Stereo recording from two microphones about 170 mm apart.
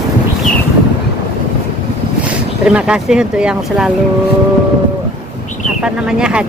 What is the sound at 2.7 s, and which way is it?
Speech, 5° right (ahead or behind).